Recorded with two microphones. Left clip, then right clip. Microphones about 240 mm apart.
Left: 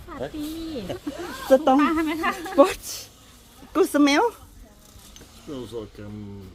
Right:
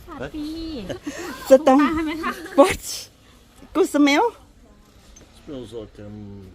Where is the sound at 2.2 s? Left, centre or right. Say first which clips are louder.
Left 2 dB; centre.